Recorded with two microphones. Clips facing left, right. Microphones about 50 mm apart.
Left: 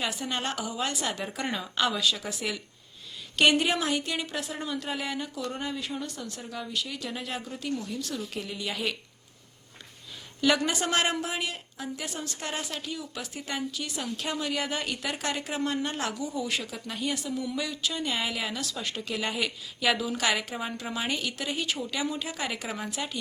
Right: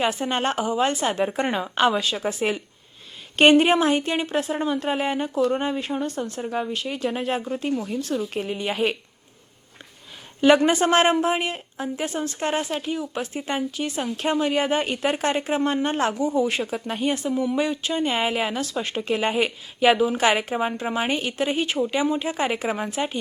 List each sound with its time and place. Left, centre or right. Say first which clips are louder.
0.0 s speech: right 8 dB; right
7.7 s speech: right 4 dB; centre
7.9 s speech: right 8 dB; right
10.4 s speech: right 9 dB; right